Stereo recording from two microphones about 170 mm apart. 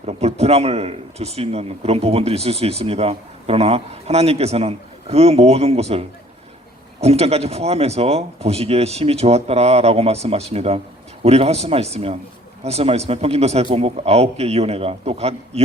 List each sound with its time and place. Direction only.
0.0 s speech: 40° right (ahead or behind)